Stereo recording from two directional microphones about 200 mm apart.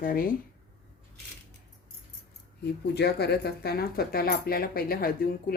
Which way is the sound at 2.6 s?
55° left (ahead or behind).